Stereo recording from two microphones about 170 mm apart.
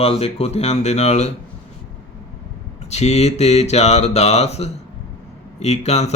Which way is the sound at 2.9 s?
40° left (ahead or behind).